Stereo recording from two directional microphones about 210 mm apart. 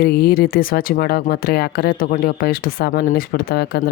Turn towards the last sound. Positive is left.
turn(degrees=45)  # may be behind; listen again after turning